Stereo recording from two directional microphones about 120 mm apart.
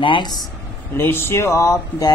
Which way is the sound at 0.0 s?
40° left (ahead or behind).